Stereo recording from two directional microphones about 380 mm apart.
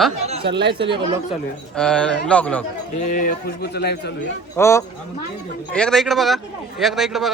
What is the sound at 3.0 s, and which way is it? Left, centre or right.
Speech, left.